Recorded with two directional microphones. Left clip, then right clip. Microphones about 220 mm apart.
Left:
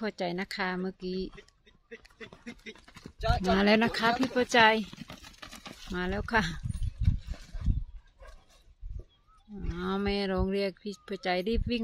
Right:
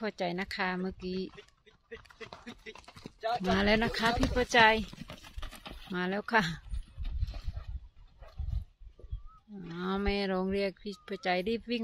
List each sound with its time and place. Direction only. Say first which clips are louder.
0.0 s speech: left 1 dB; 5° left (ahead or behind)
1.9 s a sound: even; 5° left (ahead or behind)
2.6 s speech: left 1 dB; 20° left (ahead or behind)
3.2 s speech: left 2 dB; 45° left (ahead or behind)
3.4 s speech: left 4 dB; 20° left (ahead or behind)
5.0 s a sound: left 1 dB; centre (ahead or behind)
9.6 s speech: left 2 dB; 10° left (ahead or behind)